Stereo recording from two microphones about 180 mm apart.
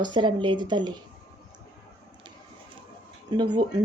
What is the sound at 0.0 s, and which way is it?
Speech, 25° right (ahead or behind).